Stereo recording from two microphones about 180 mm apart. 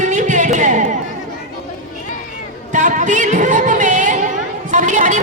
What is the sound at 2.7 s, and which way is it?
Music, 45° right (ahead or behind).